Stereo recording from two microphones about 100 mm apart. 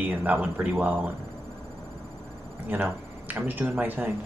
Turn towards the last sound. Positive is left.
turn(degrees=-15)  # may be behind; listen again after turning